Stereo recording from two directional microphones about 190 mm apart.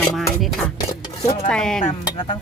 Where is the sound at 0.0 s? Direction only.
Centre (ahead or behind).